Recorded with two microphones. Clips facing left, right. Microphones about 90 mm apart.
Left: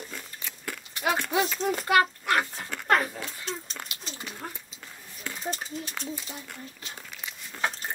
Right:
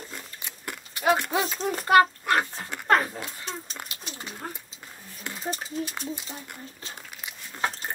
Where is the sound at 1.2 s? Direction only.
35° right (ahead or behind).